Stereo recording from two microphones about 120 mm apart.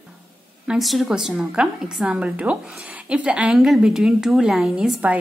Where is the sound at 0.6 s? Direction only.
Centre (ahead or behind).